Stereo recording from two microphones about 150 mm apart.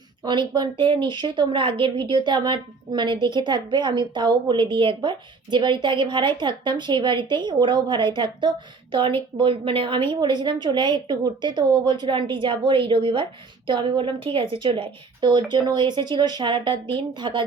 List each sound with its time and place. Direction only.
0.3 s a woman's voice: 30° right (ahead or behind)